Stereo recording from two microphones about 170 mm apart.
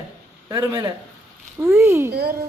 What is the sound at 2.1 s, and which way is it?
Speech, 65° right (ahead or behind).